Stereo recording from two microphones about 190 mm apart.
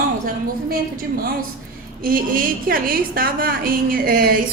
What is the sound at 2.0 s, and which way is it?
A woman's voice, 50° right (ahead or behind).